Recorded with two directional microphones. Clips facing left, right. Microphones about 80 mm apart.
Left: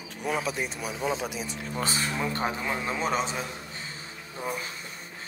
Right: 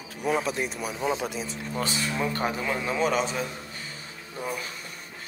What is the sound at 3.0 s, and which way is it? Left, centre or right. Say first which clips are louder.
Speech: right 4 dB; left.